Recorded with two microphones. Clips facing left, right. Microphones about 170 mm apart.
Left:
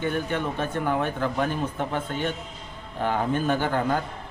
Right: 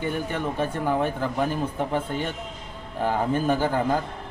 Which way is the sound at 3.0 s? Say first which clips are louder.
Right 1 dB; 5° right (ahead or behind).